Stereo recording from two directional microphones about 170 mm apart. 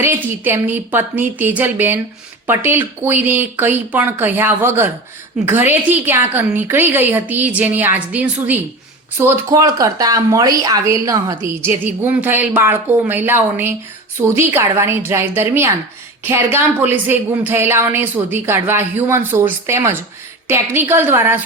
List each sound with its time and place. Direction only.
0.0 s speech: 15° right (ahead or behind)